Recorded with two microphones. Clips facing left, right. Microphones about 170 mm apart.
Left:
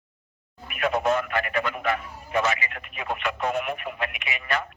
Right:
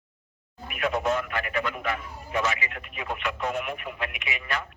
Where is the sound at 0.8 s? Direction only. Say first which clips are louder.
Left 3 dB; 60° left (ahead or behind).